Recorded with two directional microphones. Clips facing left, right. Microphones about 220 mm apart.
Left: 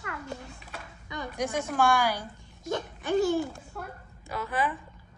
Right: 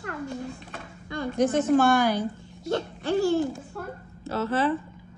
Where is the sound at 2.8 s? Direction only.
15° left (ahead or behind).